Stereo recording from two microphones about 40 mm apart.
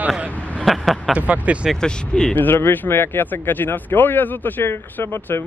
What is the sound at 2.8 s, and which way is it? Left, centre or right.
Speech, left.